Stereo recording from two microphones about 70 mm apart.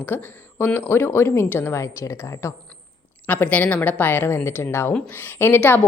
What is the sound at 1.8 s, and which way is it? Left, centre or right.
Speech, left.